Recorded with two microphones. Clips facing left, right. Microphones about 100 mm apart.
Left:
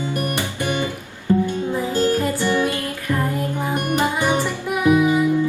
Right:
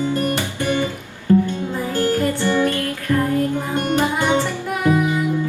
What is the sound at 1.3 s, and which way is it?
Music, 20° left (ahead or behind).